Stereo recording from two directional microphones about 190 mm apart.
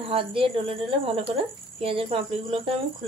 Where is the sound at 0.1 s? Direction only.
30° right (ahead or behind).